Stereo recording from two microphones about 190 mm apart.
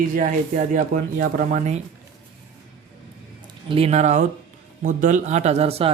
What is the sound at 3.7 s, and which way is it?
Speech, 30° right (ahead or behind).